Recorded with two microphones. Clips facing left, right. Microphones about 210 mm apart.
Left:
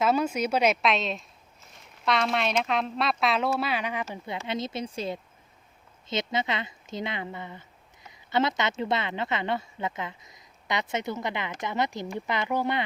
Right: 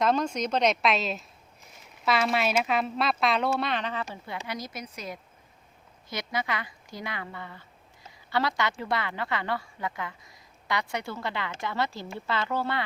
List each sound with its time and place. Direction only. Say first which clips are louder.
0.0 s speech: left 1 dB; 5° left (ahead or behind)
4.4 s a woman's voice: left 5 dB; 25° left (ahead or behind)